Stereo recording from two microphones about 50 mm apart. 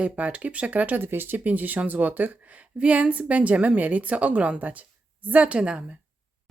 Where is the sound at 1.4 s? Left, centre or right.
Right.